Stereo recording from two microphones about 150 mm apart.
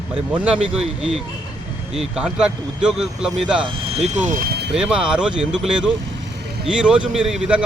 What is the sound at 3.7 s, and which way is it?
Speech, 40° right (ahead or behind).